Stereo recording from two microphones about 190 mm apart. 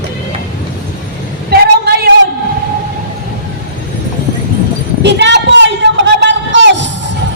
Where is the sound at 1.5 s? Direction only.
55° right (ahead or behind).